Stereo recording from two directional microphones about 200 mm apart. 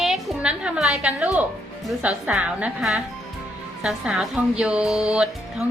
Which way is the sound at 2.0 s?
5° right (ahead or behind).